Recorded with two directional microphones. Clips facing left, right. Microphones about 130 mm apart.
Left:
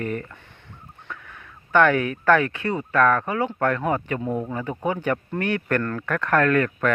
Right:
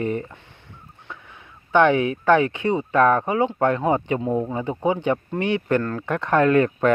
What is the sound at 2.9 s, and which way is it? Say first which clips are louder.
Speech: right 1 dB; 30° right (ahead or behind).